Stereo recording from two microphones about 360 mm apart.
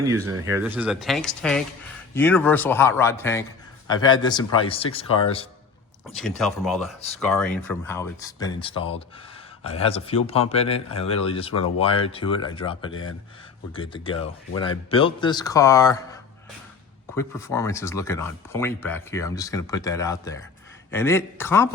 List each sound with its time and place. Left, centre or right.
0.0 s speech: centre
6.1 s speech: centre
12.9 s speech: left
13.7 s speech: centre
17.2 s speech: centre